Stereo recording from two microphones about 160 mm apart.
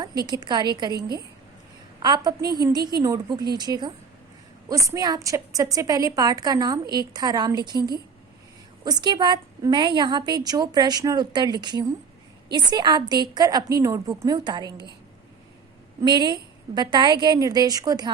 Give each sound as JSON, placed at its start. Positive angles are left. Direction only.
{"t": 0.0, "sound": "a woman's voice", "side_deg": -25}
{"t": 2.0, "sound": "a woman's voice", "side_deg": -25}
{"t": 8.8, "sound": "a woman's voice", "side_deg": -25}
{"t": 16.0, "sound": "a woman's voice", "side_deg": -25}